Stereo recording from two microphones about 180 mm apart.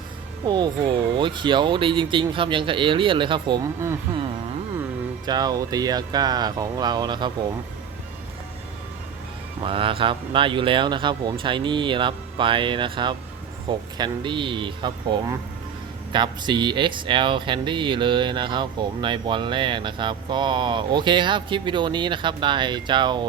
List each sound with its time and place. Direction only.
0.4 s speech: 25° right (ahead or behind)
5.2 s speech: 20° right (ahead or behind)
9.6 s speech: 30° right (ahead or behind)